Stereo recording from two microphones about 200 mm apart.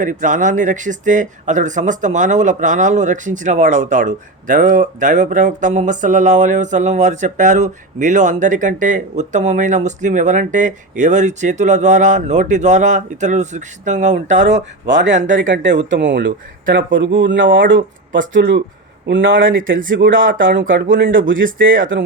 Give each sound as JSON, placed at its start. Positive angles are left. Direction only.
{"t": 0.0, "sound": "speech", "side_deg": -40}
{"t": 14.8, "sound": "speech", "side_deg": -65}